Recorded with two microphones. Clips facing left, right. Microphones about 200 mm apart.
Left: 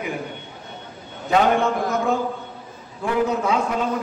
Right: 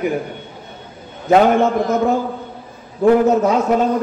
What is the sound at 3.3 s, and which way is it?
Speech, 45° right (ahead or behind).